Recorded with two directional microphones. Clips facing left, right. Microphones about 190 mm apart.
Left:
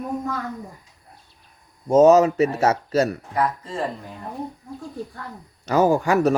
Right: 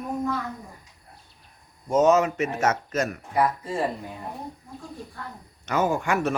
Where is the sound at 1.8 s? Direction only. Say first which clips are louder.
Left 6 dB; 35° left (ahead or behind).